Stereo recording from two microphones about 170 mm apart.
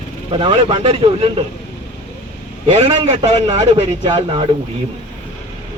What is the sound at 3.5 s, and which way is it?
Speech, 25° right (ahead or behind).